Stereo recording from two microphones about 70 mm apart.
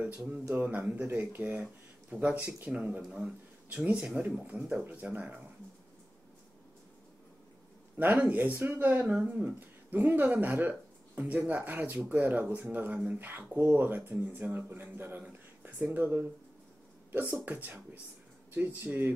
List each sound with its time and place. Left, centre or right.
0.6 s a man's voice: right
8.0 s speech: right
9.0 s speech: centre
9.3 s speech: right